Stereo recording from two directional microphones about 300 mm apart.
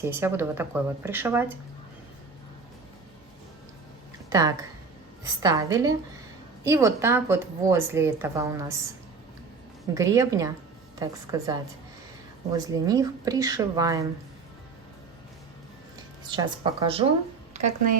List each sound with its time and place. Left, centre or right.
0.0 s a woman's voice: centre
4.3 s a woman's voice: centre
9.9 s a woman's voice: centre
12.5 s a woman's voice: centre
16.3 s a woman's voice: centre